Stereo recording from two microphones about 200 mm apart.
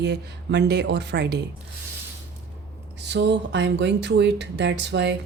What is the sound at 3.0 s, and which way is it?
Speech, 60° right (ahead or behind).